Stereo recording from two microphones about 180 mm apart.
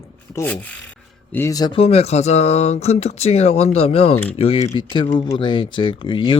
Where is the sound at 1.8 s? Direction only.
35° left (ahead or behind).